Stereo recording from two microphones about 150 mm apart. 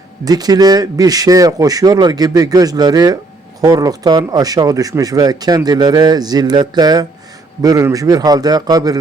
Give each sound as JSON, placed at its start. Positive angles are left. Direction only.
{"t": 0.3, "sound": "speech", "side_deg": -25}